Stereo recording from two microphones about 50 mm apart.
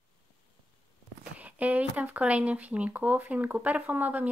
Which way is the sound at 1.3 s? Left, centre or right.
Right.